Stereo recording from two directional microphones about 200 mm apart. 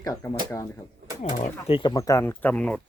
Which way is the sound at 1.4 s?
30° left (ahead or behind).